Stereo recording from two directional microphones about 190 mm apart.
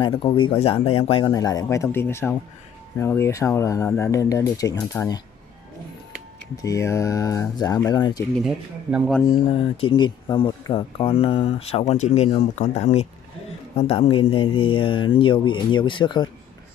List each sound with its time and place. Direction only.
0.0 s speech: 30° left (ahead or behind)
6.5 s speech: 20° left (ahead or behind)
8.5 s speech: 5° right (ahead or behind)
9.5 s speech: 30° left (ahead or behind)